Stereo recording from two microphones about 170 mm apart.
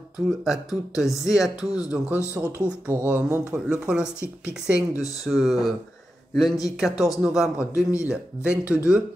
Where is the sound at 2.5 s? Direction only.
5° right (ahead or behind).